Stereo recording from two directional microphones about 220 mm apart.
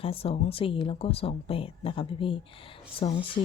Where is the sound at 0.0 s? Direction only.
25° left (ahead or behind).